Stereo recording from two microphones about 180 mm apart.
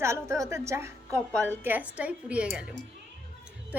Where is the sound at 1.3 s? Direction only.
10° left (ahead or behind).